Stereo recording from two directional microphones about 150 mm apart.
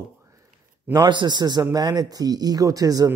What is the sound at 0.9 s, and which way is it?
A man's voice, 30° right (ahead or behind).